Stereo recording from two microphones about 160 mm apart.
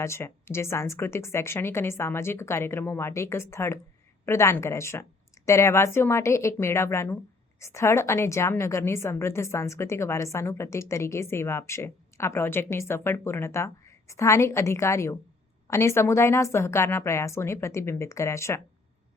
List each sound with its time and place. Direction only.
0.0 s a woman's voice: 15° left (ahead or behind)